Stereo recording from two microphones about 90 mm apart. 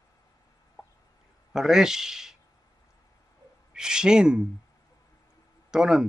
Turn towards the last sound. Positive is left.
turn(degrees=-5)  # may be behind; listen again after turning